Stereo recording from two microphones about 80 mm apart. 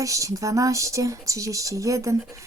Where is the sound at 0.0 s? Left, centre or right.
Right.